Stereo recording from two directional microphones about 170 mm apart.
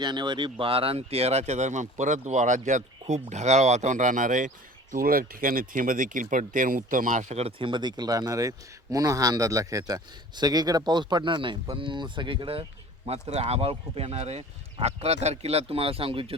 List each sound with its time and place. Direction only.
0.0 s speech: 25° right (ahead or behind)